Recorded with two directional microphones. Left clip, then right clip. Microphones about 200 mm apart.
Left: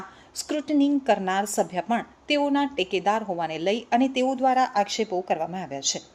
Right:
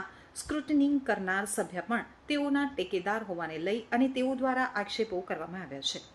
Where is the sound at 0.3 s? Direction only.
25° left (ahead or behind).